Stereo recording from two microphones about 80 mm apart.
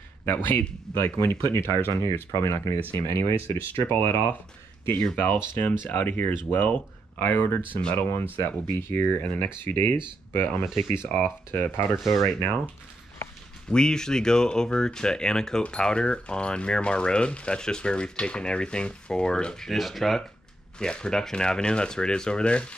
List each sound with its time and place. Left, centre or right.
0.2 s speech: left
8.8 s speech: left
12.0 s speech: centre
13.7 s speech: centre